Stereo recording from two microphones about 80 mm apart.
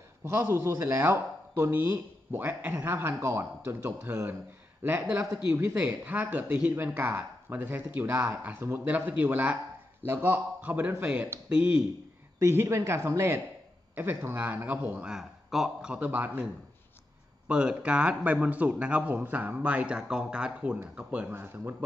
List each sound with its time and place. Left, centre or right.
0.2 s speech: right
3.6 s speech: right
5.3 s speech: centre
8.5 s speech: right
10.0 s speech: right
12.4 s speech: right
13.9 s speech: right
15.0 s speech: centre
15.9 s speech: centre
17.5 s speech: centre